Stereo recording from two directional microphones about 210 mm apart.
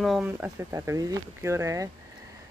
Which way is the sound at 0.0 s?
5° right (ahead or behind).